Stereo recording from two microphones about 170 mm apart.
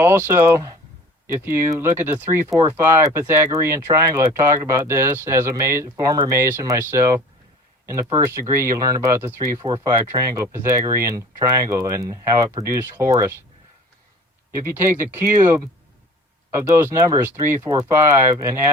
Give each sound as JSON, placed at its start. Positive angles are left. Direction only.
{"t": 0.0, "sound": "speech", "side_deg": -15}
{"t": 8.2, "sound": "speech", "side_deg": -15}
{"t": 14.6, "sound": "speech", "side_deg": -15}
{"t": 16.6, "sound": "speech", "side_deg": -15}